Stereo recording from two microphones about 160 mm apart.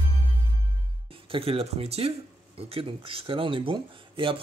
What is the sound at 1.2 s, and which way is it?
A man's voice, 35° right (ahead or behind).